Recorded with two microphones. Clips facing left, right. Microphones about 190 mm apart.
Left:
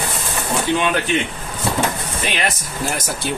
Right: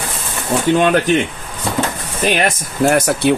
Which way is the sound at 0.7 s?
45° right (ahead or behind).